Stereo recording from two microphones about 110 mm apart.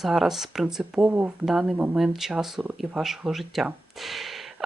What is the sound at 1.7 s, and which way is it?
Speech, 15° right (ahead or behind).